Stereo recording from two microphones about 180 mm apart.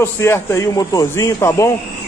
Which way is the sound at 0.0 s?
15° left (ahead or behind).